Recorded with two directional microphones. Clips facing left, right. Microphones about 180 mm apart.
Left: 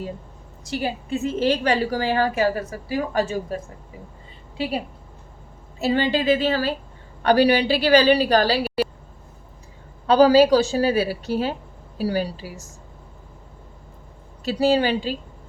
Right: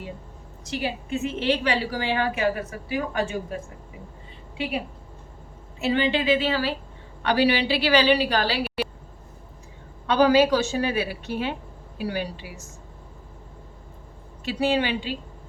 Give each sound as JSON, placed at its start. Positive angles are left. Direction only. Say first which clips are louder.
{"t": 0.7, "sound": "a woman's voice", "louder": "left 2 dB", "side_deg": 35}
{"t": 5.8, "sound": "a woman's voice", "louder": "left 2 dB", "side_deg": 35}
{"t": 10.1, "sound": "a woman's voice", "louder": "left 4 dB", "side_deg": 35}
{"t": 14.4, "sound": "a woman's voice", "louder": "left 4 dB", "side_deg": 40}